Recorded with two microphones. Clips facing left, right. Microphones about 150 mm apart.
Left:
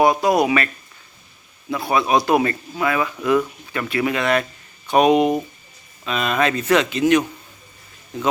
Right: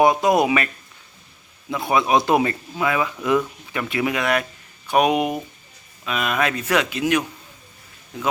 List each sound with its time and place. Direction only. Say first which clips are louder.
0.0 s speech: even; 20° right (ahead or behind)
1.7 s speech: even; 20° right (ahead or behind)